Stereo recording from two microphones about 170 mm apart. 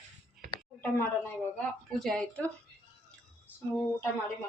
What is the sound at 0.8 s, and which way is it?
Speech, 15° left (ahead or behind).